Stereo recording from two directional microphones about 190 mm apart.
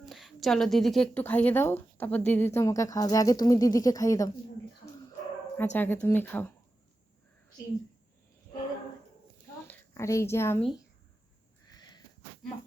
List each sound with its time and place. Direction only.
0.0 s speech: centre (ahead or behind); by 4.3 s 15° left (ahead or behind)
5.5 s speech: 10° left (ahead or behind)
9.6 s speech: 15° left (ahead or behind)
11.7 s wheeze: 20° left (ahead or behind)